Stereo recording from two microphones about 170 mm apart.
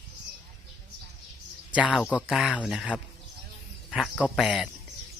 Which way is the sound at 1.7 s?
5° right (ahead or behind).